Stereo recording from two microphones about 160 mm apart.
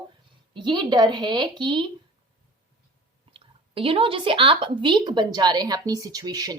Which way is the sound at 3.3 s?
35° right (ahead or behind).